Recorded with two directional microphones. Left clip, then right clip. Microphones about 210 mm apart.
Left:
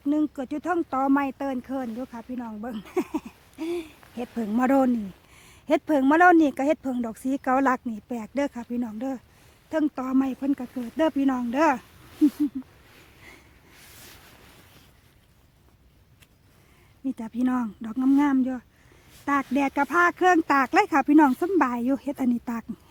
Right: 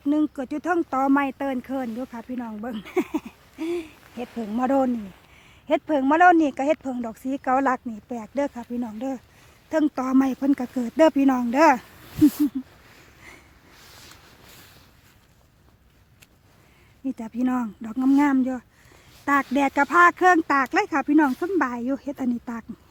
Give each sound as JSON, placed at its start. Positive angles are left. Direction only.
{"t": 0.0, "sound": "speech", "side_deg": 0}
{"t": 4.2, "sound": "speech", "side_deg": 25}
{"t": 9.6, "sound": "speech", "side_deg": -5}
{"t": 17.1, "sound": "speech", "side_deg": 10}